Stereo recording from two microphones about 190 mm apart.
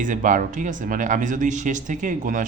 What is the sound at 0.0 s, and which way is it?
Speech, 45° right (ahead or behind).